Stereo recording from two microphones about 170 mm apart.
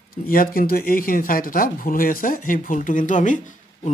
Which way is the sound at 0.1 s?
60° left (ahead or behind).